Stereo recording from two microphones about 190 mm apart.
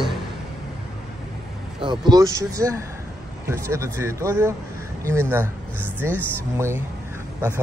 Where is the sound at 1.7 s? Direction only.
25° right (ahead or behind).